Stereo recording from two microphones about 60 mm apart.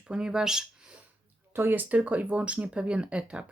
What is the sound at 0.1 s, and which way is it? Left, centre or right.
Speech, centre.